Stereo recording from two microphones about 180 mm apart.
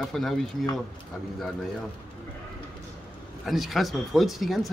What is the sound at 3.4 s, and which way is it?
A man's voice, centre (ahead or behind).